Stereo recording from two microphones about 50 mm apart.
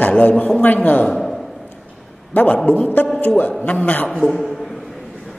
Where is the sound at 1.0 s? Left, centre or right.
Centre.